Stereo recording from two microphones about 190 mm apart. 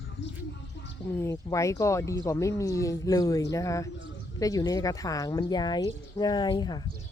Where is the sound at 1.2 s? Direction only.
15° left (ahead or behind).